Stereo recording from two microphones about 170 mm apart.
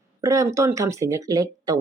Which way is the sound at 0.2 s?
20° right (ahead or behind).